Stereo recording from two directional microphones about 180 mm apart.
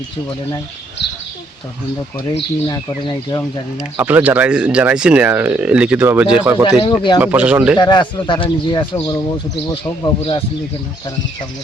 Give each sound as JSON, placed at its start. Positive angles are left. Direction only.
{"t": 1.0, "sound": "a sound", "side_deg": 70}
{"t": 2.6, "sound": "speech", "side_deg": 20}
{"t": 3.8, "sound": "speech", "side_deg": -10}
{"t": 6.7, "sound": "speech", "side_deg": 25}
{"t": 7.2, "sound": "speech", "side_deg": -10}
{"t": 7.8, "sound": "speech", "side_deg": 25}
{"t": 10.2, "sound": "speech", "side_deg": 30}